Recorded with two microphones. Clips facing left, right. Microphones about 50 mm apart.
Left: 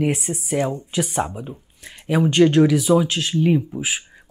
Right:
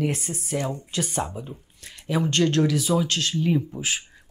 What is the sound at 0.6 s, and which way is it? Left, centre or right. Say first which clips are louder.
Speech: left 5 dB; left.